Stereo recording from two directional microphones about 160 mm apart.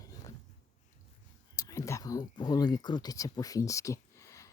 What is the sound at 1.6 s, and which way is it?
Speech, 20° left (ahead or behind).